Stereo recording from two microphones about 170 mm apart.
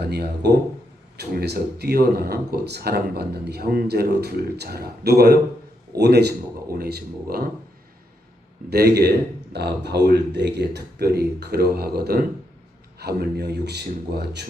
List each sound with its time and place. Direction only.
0.0 s speech: 75° right (ahead or behind)
6.7 s speech: 60° right (ahead or behind)
8.7 s speech: 75° right (ahead or behind)